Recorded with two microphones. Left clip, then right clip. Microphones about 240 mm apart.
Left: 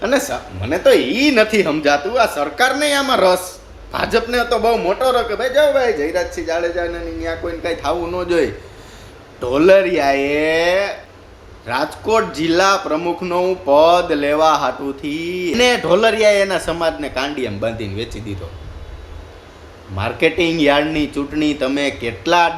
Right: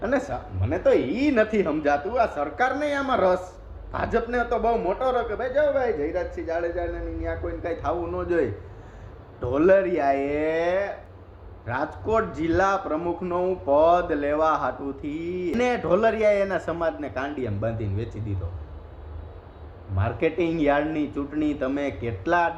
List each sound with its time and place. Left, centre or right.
0.0 s speech: centre
20.0 s speech: left